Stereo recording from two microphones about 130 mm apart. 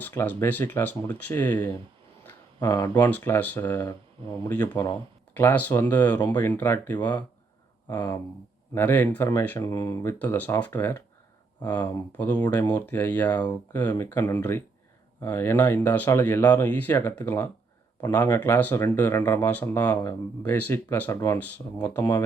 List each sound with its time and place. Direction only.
0.0 s speech: 15° left (ahead or behind)
2.6 s speech: 25° left (ahead or behind)
9.6 s speech: 25° left (ahead or behind)